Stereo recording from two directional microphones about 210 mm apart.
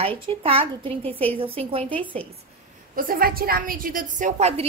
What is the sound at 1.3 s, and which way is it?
Speech, 25° right (ahead or behind).